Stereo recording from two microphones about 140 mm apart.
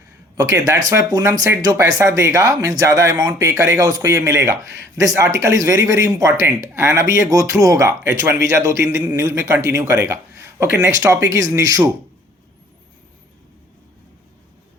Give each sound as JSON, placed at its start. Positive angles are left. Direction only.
{"t": 0.3, "sound": "speech", "side_deg": -25}